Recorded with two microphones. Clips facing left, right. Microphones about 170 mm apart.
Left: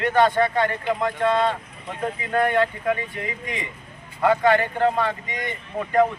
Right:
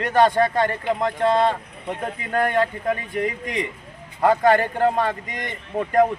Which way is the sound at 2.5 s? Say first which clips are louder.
Even; 40° right (ahead or behind).